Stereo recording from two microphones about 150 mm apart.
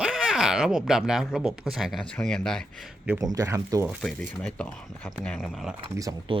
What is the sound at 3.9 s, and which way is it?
Speech, centre (ahead or behind).